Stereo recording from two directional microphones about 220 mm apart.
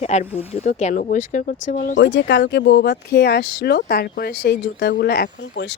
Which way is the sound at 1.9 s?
50° left (ahead or behind).